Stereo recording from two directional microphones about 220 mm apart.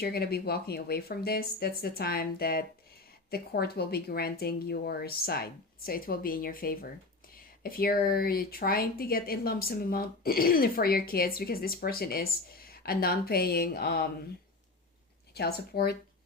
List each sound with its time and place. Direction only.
0.0 s speech: 45° left (ahead or behind)
15.4 s speech: 45° left (ahead or behind)